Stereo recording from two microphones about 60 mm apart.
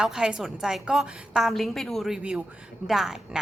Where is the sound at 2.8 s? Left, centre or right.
Centre.